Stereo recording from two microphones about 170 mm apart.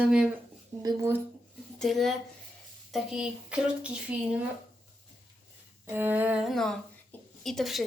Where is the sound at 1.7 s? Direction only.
Centre (ahead or behind).